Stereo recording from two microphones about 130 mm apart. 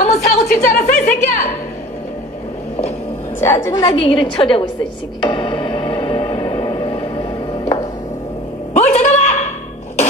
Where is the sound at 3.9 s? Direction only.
45° left (ahead or behind).